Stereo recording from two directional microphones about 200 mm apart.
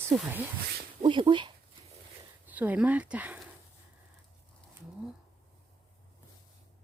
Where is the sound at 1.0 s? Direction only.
25° right (ahead or behind).